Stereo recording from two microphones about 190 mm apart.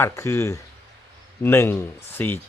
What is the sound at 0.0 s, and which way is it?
Speech, 15° left (ahead or behind).